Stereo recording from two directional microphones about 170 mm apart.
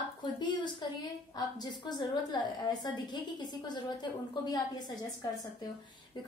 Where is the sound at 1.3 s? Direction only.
25° left (ahead or behind).